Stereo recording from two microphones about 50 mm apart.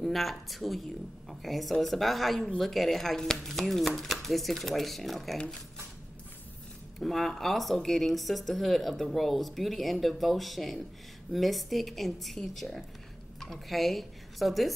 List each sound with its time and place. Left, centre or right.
0.0 s speech: centre
7.0 s speech: centre